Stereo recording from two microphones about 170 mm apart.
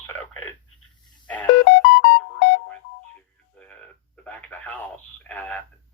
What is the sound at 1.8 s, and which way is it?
Music, 90° left.